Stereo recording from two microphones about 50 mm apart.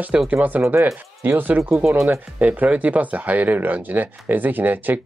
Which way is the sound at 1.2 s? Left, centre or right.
Right.